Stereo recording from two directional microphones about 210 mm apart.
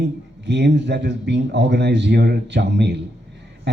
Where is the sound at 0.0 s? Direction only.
55° right (ahead or behind).